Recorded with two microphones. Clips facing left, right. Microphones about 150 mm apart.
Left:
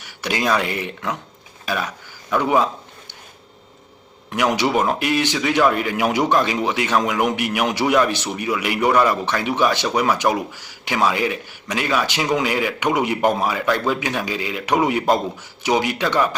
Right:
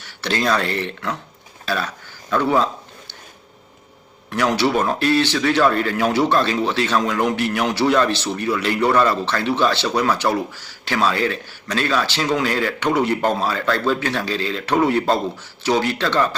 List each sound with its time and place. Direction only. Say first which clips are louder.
0.0 s speech: right 1 dB; 10° left (ahead or behind)
4.3 s speech: right 1 dB; 15° left (ahead or behind)